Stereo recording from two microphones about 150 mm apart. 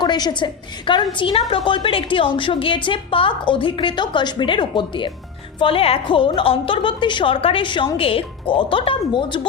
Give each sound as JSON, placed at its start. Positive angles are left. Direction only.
{"t": 0.0, "sound": "a woman's voice", "side_deg": 30}